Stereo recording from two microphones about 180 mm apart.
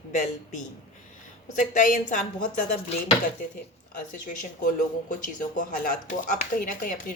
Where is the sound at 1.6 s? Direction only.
45° left (ahead or behind).